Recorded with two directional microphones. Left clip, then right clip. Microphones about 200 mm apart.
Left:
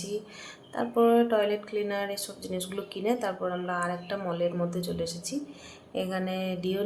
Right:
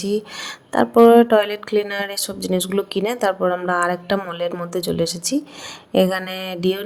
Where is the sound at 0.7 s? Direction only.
55° right (ahead or behind).